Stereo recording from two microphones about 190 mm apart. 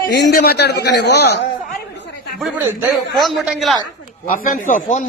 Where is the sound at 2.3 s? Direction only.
Centre (ahead or behind).